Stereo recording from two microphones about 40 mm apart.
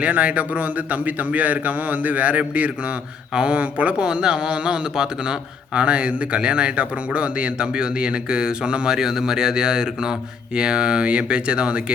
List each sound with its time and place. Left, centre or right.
0.0 s a man's voice: right
4.0 s speech: centre